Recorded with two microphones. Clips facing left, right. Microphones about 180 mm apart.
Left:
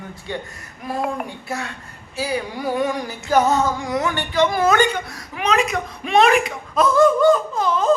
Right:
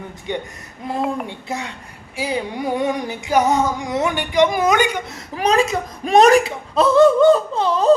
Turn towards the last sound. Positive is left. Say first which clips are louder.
# right 3 dB
turn(degrees=-35)  # may be behind; listen again after turning